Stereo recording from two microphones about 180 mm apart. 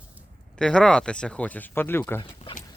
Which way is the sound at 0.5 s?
5° left (ahead or behind).